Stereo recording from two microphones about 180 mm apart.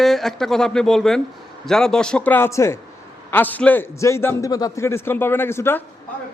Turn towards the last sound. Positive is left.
turn(degrees=15)  # may be behind; listen again after turning